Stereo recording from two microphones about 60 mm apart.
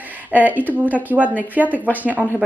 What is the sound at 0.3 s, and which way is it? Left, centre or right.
A woman's voice, right.